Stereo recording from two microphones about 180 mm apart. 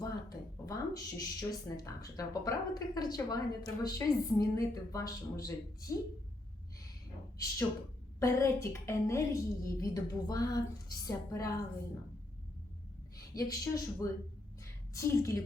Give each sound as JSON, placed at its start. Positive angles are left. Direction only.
{"t": 0.0, "sound": "a woman's voice", "side_deg": 20}
{"t": 8.2, "sound": "a woman's voice", "side_deg": 15}
{"t": 13.1, "sound": "a woman's voice", "side_deg": 20}
{"t": 14.6, "sound": "a sound", "side_deg": 15}